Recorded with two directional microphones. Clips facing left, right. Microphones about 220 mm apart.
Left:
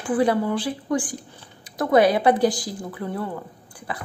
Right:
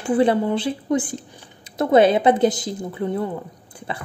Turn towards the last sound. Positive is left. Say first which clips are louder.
# right 2 dB
turn(degrees=-25)  # may be behind; listen again after turning